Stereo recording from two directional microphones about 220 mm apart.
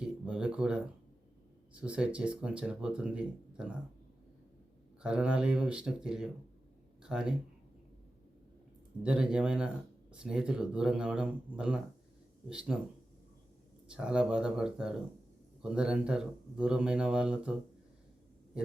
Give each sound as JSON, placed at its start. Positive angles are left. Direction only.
{"t": 0.0, "sound": "speech", "side_deg": -5}
{"t": 5.0, "sound": "speech", "side_deg": -5}
{"t": 9.0, "sound": "speech", "side_deg": -5}
{"t": 13.8, "sound": "speech", "side_deg": -5}